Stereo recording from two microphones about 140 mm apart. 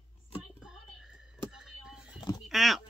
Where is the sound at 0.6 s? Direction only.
5° right (ahead or behind).